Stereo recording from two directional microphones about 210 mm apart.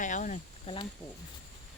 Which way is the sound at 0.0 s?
35° left (ahead or behind).